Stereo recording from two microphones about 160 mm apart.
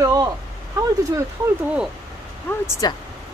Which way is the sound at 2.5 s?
20° left (ahead or behind).